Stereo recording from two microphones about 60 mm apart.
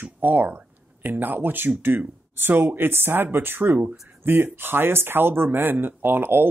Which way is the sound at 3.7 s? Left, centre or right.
Right.